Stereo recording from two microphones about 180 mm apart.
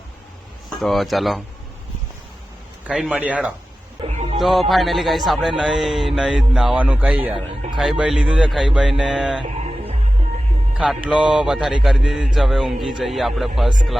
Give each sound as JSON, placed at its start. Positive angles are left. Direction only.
{"t": 0.8, "sound": "speech", "side_deg": 0}
{"t": 2.8, "sound": "a man's voice", "side_deg": -5}
{"t": 4.0, "sound": "music", "side_deg": -35}
{"t": 4.4, "sound": "speech", "side_deg": 0}
{"t": 10.8, "sound": "speech", "side_deg": -5}